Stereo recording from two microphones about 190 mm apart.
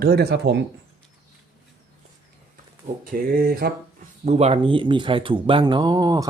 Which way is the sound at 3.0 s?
50° right (ahead or behind).